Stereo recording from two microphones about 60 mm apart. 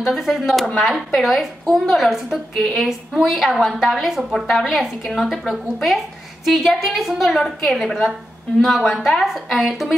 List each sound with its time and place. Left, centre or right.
0.0 s a woman's voice: centre